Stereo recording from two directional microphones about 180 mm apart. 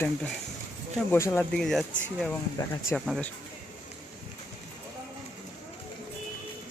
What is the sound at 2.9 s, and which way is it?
Speech, 5° left (ahead or behind).